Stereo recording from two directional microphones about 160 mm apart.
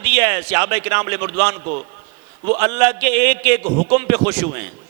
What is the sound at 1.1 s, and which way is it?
A man's voice, 30° right (ahead or behind).